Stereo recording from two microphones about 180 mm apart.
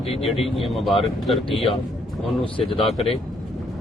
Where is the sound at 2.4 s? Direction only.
30° left (ahead or behind).